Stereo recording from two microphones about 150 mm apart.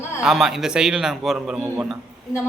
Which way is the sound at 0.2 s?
Centre (ahead or behind).